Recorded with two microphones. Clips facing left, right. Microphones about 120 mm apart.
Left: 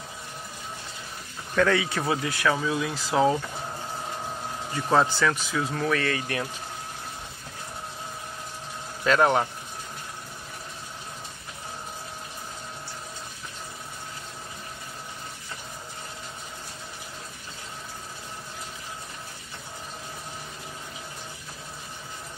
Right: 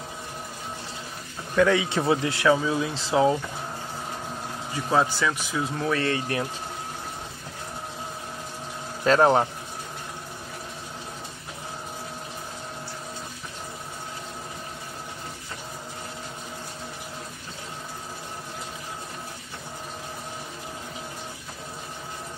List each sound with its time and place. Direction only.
1.5 s speech: 15° right (ahead or behind)
4.9 s speech: 10° right (ahead or behind)
5.9 s speech: 30° right (ahead or behind)
9.0 s speech: 35° right (ahead or behind)